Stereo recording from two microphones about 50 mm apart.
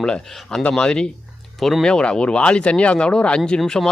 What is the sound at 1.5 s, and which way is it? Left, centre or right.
Speech, centre.